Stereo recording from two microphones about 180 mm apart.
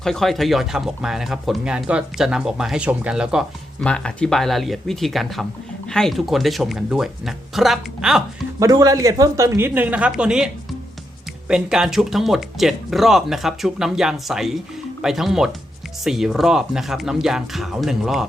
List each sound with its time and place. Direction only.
0.0 s speech: centre (ahead or behind)
8.5 s a woman's voice: 20° right (ahead or behind); by 18.3 s centre (ahead or behind)